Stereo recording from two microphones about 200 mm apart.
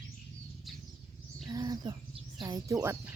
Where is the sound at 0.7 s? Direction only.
Centre (ahead or behind).